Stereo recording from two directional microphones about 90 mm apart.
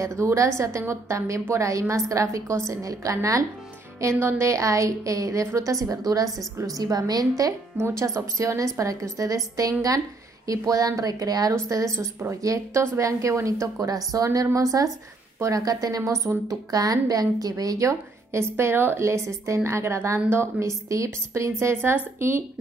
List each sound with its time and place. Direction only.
0.0 s a woman's voice: 35° right (ahead or behind)
11.5 s a woman's voice: 35° right (ahead or behind)
18.6 s a woman's voice: 25° right (ahead or behind)